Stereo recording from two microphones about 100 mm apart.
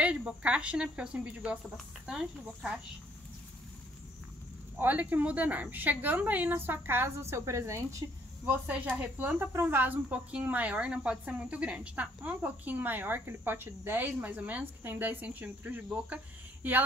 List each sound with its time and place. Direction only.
0.0 s speech: 10° right (ahead or behind)
4.7 s speech: 15° right (ahead or behind)
8.5 s speech: 15° right (ahead or behind)